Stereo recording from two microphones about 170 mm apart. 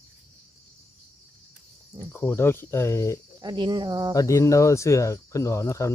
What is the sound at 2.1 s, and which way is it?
Speech, 15° left (ahead or behind).